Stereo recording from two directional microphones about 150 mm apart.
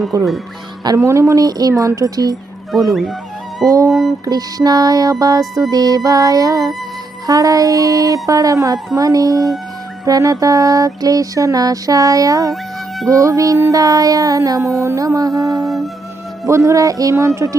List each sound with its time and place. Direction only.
0.1 s music: 25° right (ahead or behind)
2.9 s speech: centre (ahead or behind)
3.7 s music: 20° right (ahead or behind)
15.6 s speech: centre (ahead or behind)
16.5 s music: 20° right (ahead or behind)